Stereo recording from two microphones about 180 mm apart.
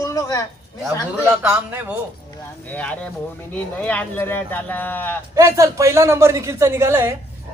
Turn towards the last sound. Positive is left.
turn(degrees=-15)  # may be behind; listen again after turning